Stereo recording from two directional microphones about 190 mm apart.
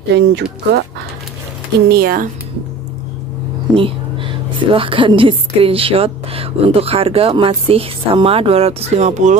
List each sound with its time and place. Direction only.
0.1 s speech: 60° right (ahead or behind)
1.9 s speech: 55° right (ahead or behind)
3.7 s a woman's voice: 25° right (ahead or behind)